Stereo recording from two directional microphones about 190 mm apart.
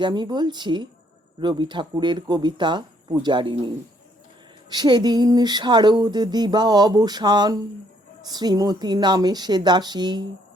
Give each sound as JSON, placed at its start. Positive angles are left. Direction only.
{"t": 0.0, "sound": "speech", "side_deg": -20}
{"t": 4.7, "sound": "speech", "side_deg": -20}